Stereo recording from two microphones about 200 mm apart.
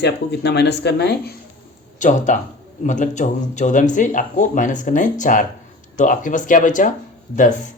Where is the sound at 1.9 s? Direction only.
40° left (ahead or behind).